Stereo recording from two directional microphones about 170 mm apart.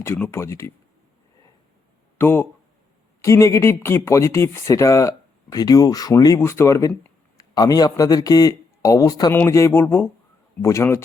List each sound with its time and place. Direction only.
0.0 s speech: 15° left (ahead or behind)
2.1 s speech: 15° left (ahead or behind)